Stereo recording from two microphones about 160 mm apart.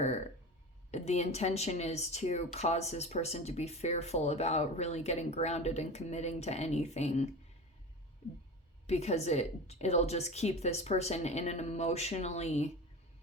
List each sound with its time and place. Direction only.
0.9 s a woman's voice: 45° left (ahead or behind)
8.9 s a woman's voice: 40° left (ahead or behind)